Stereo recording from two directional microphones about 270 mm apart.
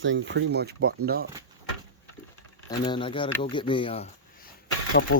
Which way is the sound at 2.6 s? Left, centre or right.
Centre.